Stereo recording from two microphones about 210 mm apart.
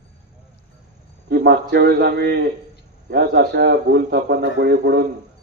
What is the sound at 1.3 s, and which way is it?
A man's voice, 50° right (ahead or behind).